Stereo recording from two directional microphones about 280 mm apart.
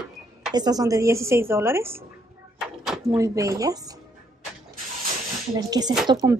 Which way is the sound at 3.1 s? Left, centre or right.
Centre.